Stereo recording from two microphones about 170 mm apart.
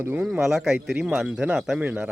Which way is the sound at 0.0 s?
10° right (ahead or behind).